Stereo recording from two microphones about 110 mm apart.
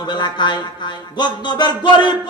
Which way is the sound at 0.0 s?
40° left (ahead or behind).